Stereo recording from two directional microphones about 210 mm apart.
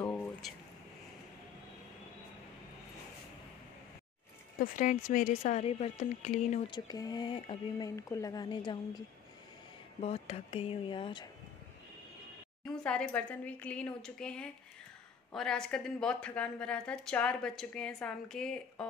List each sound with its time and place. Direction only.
0.1 s a sound: 5° left (ahead or behind)
4.6 s speech: 40° left (ahead or behind)
6.7 s a woman's voice: 20° left (ahead or behind)
9.9 s speech: 30° left (ahead or behind)
12.6 s a woman's voice: 5° left (ahead or behind)